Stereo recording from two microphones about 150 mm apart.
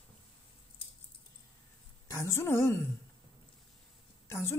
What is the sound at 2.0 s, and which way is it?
Speech, 20° left (ahead or behind).